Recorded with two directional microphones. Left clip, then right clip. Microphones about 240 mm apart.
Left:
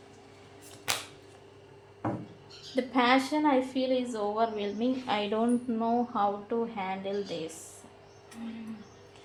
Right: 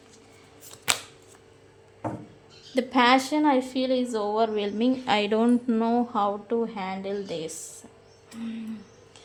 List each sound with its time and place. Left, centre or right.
0.9 s shuffling cards: right
2.7 s a woman's voice: right